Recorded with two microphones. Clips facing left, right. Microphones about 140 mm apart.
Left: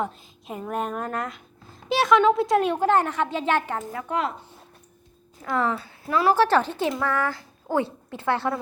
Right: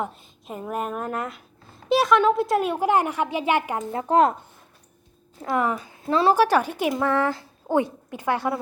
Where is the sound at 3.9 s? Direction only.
25° right (ahead or behind).